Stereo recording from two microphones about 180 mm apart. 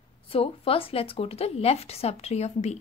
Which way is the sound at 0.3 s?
30° left (ahead or behind).